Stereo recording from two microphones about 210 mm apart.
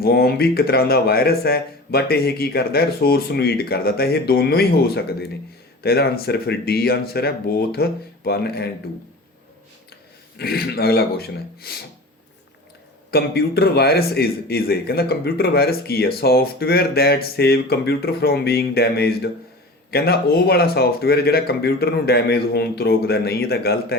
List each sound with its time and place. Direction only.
0.0 s a man's voice: 50° left (ahead or behind)
10.3 s a man's voice: 50° left (ahead or behind)
13.1 s a man's voice: 50° left (ahead or behind)